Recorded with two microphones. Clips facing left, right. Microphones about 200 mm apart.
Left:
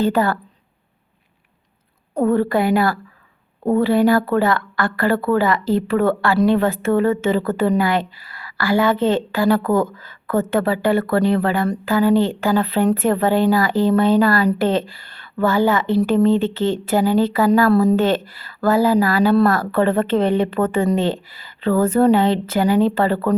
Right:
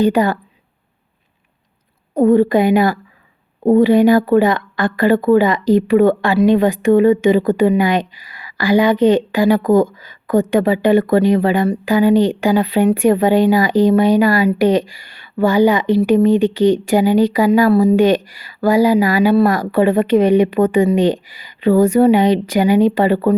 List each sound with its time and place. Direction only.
0.0 s speech: 15° right (ahead or behind)
2.1 s speech: 15° right (ahead or behind)